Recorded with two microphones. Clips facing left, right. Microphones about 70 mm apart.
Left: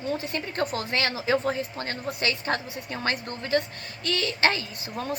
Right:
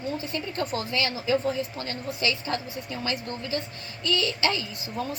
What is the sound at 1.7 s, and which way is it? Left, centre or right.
Speech, left.